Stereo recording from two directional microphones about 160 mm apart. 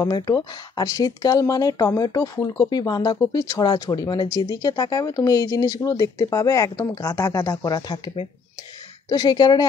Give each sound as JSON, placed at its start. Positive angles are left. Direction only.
{"t": 0.0, "sound": "speech", "side_deg": 25}
{"t": 9.1, "sound": "speech", "side_deg": 25}